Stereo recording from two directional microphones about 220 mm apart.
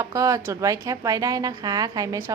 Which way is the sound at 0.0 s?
15° right (ahead or behind).